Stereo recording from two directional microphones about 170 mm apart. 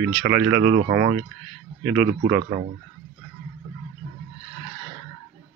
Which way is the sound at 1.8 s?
10° right (ahead or behind).